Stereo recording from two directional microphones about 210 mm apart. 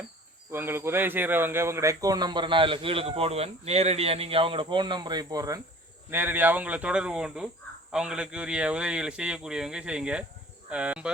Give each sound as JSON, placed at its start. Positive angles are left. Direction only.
{"t": 0.5, "sound": "speech", "side_deg": -10}